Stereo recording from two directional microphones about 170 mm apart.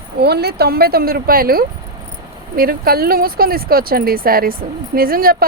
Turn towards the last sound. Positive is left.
turn(degrees=-60)  # may be behind; listen again after turning